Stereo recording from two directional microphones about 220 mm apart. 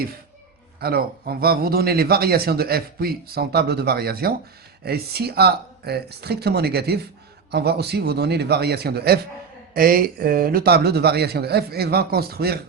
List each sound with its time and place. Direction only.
0.8 s a man's voice: 45° right (ahead or behind)